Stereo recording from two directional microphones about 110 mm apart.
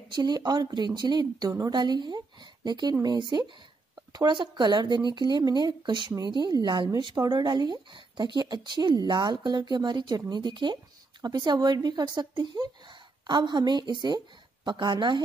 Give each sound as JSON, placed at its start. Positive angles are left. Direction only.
{"t": 0.1, "sound": "a woman's voice", "side_deg": -40}